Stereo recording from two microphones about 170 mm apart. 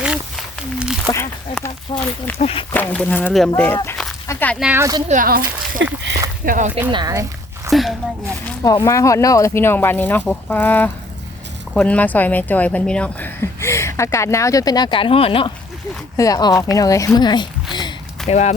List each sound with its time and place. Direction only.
0.0 s a sound: 5° right (ahead or behind)
1.0 s speech: 15° left (ahead or behind); by 2.6 s 35° left (ahead or behind)
2.7 s speech: 5° left (ahead or behind)
4.6 s speech: 10° right (ahead or behind)
5.0 s speech: 50° right (ahead or behind); by 6.1 s 75° right (ahead or behind)
6.4 s speech: 55° right (ahead or behind)
6.7 s speech: 10° right (ahead or behind)
6.9 s a sound: 20° right (ahead or behind)
7.7 s speech: centre (ahead or behind)
8.6 s speech: 20° left (ahead or behind)
16.1 s speech: 20° left (ahead or behind)
18.3 s speech: 40° left (ahead or behind)